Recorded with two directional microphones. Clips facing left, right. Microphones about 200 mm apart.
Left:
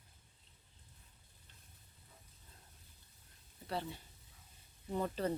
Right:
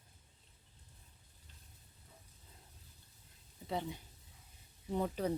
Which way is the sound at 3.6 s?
15° right (ahead or behind).